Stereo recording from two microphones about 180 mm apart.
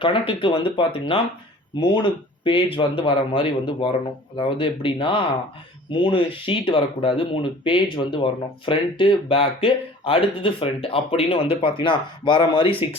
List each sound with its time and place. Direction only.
0.0 s speech: 30° left (ahead or behind)